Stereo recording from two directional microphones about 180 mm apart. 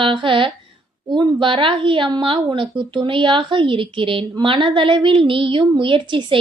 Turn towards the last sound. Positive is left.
turn(degrees=-30)  # may be behind; listen again after turning